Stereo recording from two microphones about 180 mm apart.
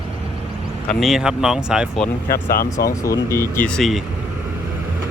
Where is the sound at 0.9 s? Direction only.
Centre (ahead or behind).